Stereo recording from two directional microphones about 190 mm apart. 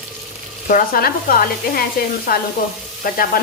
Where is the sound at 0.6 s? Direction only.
50° left (ahead or behind).